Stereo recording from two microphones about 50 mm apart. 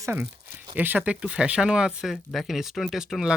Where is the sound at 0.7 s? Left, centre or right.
Right.